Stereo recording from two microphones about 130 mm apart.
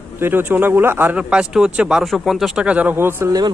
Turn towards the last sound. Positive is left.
turn(degrees=-15)  # may be behind; listen again after turning